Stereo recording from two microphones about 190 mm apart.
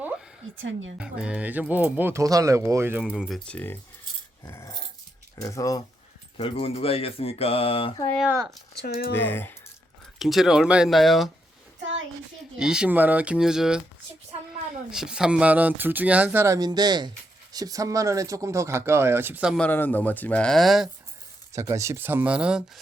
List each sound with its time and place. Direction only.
0.5 s speech: 90° right
0.9 s speech: 5° right (ahead or behind)
3.0 s speech: centre (ahead or behind)
4.4 s dog: 15° left (ahead or behind)
5.4 s speech: 15° left (ahead or behind)
6.3 s speech: 30° left (ahead or behind)
8.3 s speech: 15° right (ahead or behind)
9.1 s speech: 10° left (ahead or behind)
10.2 s speech: centre (ahead or behind)
11.8 s a sound: 80° right
12.5 s speech: 5° right (ahead or behind)
14.8 s speech: 5° right (ahead or behind)
19.6 s speech: 10° left (ahead or behind)
21.5 s speech: 15° right (ahead or behind)